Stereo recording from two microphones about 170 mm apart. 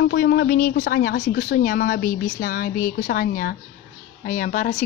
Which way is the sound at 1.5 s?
65° left (ahead or behind).